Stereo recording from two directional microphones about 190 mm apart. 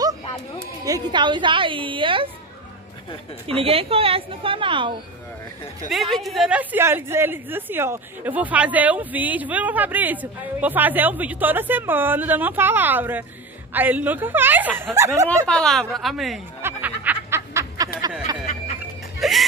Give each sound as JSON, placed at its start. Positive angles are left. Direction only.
{"t": 0.8, "sound": "a woman's voice", "side_deg": -20}
{"t": 3.4, "sound": "a woman's voice", "side_deg": -30}
{"t": 5.9, "sound": "speech", "side_deg": 0}
{"t": 15.4, "sound": "speech", "side_deg": 5}
{"t": 16.6, "sound": "snicker", "side_deg": -10}
{"t": 18.8, "sound": "laughter", "side_deg": 0}